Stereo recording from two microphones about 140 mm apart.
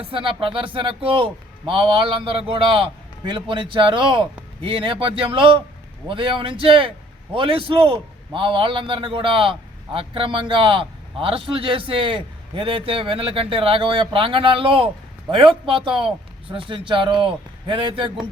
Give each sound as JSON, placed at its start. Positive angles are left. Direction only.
{"t": 0.0, "sound": "a man's voice", "side_deg": -40}